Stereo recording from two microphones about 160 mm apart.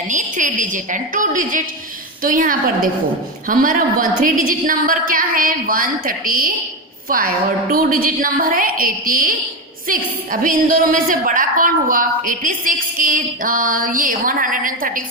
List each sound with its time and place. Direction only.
0.1 s a woman's voice: 50° right (ahead or behind)
10.4 s a woman's voice: 60° right (ahead or behind)